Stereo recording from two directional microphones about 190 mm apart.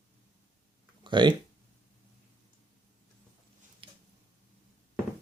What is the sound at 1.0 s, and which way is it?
Speech, 25° right (ahead or behind).